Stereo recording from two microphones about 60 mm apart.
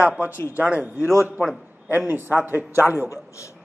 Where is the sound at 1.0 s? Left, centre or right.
Left.